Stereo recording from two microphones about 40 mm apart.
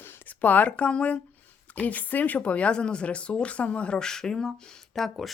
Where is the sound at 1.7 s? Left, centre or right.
Left.